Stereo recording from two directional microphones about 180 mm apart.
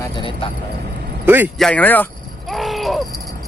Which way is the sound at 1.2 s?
10° right (ahead or behind).